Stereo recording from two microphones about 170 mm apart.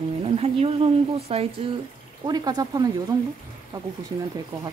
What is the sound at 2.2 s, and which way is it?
Speech, 25° right (ahead or behind).